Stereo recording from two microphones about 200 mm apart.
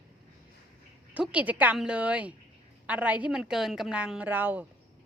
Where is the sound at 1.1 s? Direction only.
5° right (ahead or behind).